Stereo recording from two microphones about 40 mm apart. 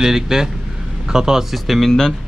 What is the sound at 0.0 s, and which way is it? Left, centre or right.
Speech, centre.